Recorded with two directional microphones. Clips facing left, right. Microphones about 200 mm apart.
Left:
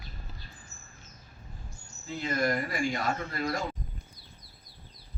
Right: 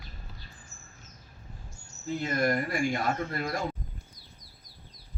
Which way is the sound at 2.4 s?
50° right (ahead or behind).